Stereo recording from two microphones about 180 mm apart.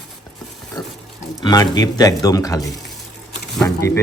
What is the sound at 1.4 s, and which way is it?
Speech, 20° left (ahead or behind).